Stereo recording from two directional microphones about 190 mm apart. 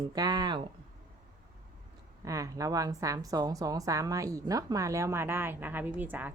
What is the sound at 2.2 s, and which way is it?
Speech, 15° right (ahead or behind).